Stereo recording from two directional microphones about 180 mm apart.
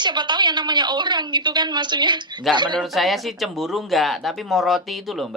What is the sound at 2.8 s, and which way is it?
Speech, centre (ahead or behind).